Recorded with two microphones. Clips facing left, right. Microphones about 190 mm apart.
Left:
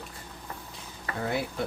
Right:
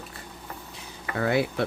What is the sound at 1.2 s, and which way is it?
Speech, 80° right.